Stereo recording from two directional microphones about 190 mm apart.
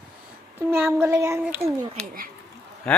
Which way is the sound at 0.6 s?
10° right (ahead or behind).